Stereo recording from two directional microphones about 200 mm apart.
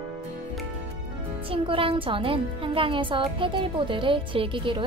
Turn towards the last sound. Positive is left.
turn(degrees=-25)  # may be behind; listen again after turning